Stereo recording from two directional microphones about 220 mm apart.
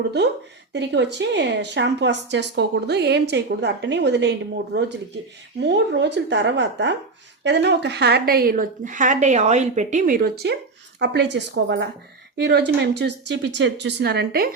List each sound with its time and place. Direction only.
0.7 s speech: 50° right (ahead or behind)